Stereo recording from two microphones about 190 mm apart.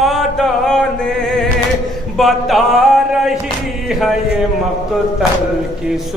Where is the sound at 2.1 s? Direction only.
Centre (ahead or behind).